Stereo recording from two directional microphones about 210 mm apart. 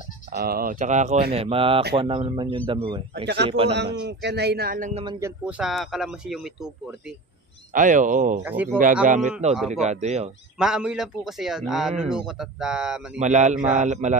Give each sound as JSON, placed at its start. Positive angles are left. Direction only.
{"t": 0.4, "sound": "a man's voice", "side_deg": -45}
{"t": 3.7, "sound": "speech", "side_deg": -55}
{"t": 5.4, "sound": "speech", "side_deg": -5}
{"t": 7.7, "sound": "a man's voice", "side_deg": -40}
{"t": 8.4, "sound": "speech", "side_deg": -10}
{"t": 9.0, "sound": "a man's voice", "side_deg": -35}
{"t": 10.6, "sound": "speech", "side_deg": -5}
{"t": 13.2, "sound": "a man's voice", "side_deg": -35}